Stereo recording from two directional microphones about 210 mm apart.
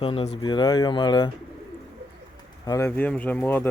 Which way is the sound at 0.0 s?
25° left (ahead or behind).